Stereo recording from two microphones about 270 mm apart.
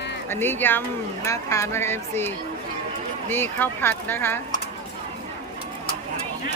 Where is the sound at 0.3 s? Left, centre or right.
Centre.